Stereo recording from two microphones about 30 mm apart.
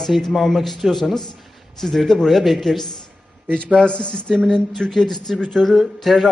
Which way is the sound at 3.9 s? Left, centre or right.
Left.